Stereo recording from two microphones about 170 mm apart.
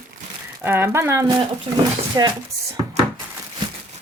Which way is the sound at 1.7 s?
30° right (ahead or behind).